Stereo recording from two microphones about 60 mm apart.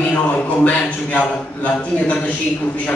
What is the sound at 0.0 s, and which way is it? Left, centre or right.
A man's voice, left.